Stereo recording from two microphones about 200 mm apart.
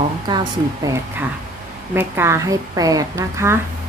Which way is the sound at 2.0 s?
10° right (ahead or behind).